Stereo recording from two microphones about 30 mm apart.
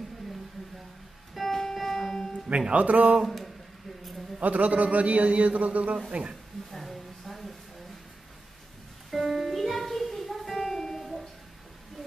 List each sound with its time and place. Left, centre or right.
1.4 s music: centre
2.7 s a man's voice: right
3.3 s speech: centre
4.4 s a man's voice: right
6.7 s a sound: centre
9.1 s music: centre